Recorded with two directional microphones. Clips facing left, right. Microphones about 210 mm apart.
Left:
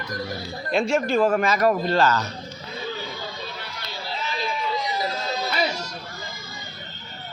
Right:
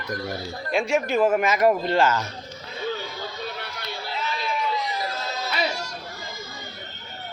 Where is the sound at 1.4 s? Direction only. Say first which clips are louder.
Right 1 dB; 20° right (ahead or behind).